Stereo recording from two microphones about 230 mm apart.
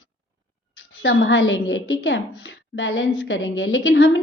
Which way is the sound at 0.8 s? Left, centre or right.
Left.